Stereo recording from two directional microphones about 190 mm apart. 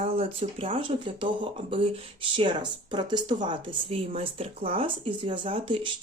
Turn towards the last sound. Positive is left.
turn(degrees=-25)  # may be behind; listen again after turning